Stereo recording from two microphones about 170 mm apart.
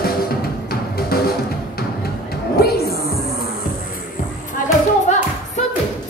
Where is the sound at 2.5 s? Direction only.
65° left (ahead or behind).